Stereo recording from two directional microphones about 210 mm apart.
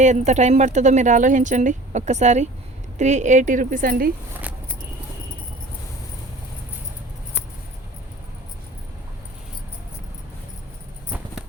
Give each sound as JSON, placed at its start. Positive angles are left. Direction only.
{"t": 0.0, "sound": "speech", "side_deg": -35}